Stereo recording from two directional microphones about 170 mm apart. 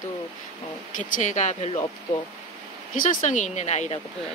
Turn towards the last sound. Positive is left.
turn(degrees=40)  # may be behind; listen again after turning